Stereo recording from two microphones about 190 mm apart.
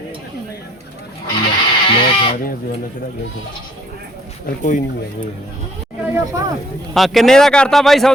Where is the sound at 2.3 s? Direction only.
50° left (ahead or behind).